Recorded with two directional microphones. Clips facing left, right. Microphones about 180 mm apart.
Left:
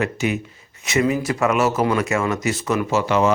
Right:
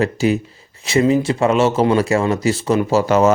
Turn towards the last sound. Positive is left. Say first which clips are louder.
# right 4 dB
turn(degrees=-40)  # may be behind; listen again after turning